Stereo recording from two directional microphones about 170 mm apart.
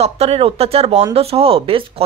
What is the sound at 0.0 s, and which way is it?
A woman's voice, 35° right (ahead or behind).